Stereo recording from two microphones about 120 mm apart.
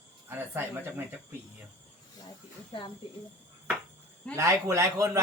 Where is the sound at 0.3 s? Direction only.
15° right (ahead or behind).